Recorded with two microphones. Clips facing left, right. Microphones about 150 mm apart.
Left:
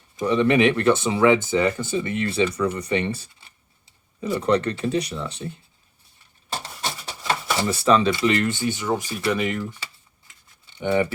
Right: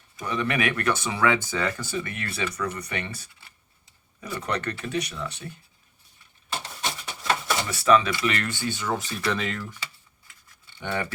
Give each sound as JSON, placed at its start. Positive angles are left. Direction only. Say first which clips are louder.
{"t": 0.2, "sound": "speech", "louder": "left 9 dB", "side_deg": 30}
{"t": 7.7, "sound": "speech", "louder": "left 2 dB", "side_deg": 30}
{"t": 9.6, "sound": "a sound", "louder": "left 4 dB", "side_deg": 30}